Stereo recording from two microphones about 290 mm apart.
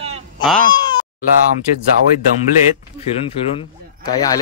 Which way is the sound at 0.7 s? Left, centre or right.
Centre.